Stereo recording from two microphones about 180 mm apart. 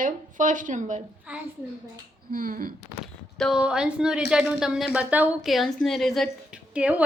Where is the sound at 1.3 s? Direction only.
10° right (ahead or behind).